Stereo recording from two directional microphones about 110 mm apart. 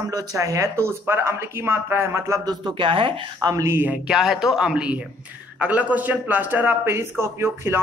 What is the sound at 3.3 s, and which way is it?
Speech, 35° right (ahead or behind).